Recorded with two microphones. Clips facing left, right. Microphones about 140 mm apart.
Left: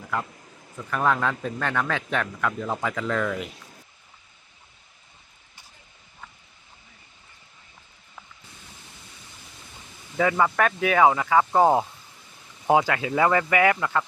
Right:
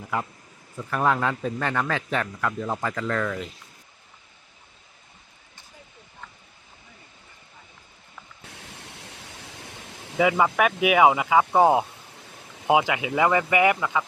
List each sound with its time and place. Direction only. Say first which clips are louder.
0.8 s speech: even; 5° right (ahead or behind)
8.4 s a sound: right 5 dB; 75° right (ahead or behind)
10.2 s speech: right 1 dB; 10° right (ahead or behind)